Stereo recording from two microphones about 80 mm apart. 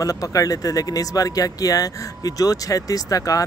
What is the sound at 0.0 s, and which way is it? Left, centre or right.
Speech, left.